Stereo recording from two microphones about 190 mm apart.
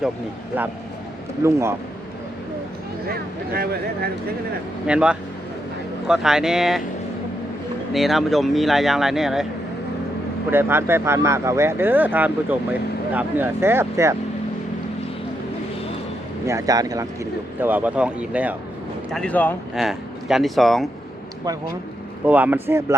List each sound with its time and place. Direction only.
1.5 s speech: 15° right (ahead or behind)
3.1 s speech: 55° right (ahead or behind)
4.9 s speech: 5° right (ahead or behind)
7.9 s speech: centre (ahead or behind)
10.5 s speech: 10° right (ahead or behind)
16.5 s speech: 15° right (ahead or behind)
19.1 s speech: 5° left (ahead or behind)
19.7 s speech: centre (ahead or behind)
22.3 s speech: 10° right (ahead or behind)